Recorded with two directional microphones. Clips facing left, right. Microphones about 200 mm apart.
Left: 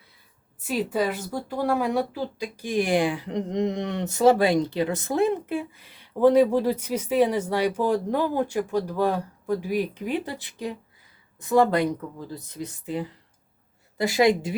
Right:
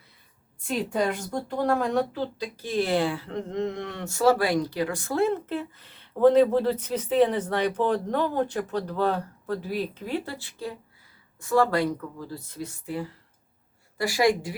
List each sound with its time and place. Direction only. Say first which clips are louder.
0.6 s speech: left 1 dB; 5° left (ahead or behind); by 14.5 s 20° left (ahead or behind)